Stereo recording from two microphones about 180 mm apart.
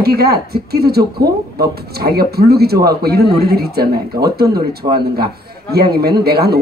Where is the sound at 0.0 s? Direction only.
60° right (ahead or behind).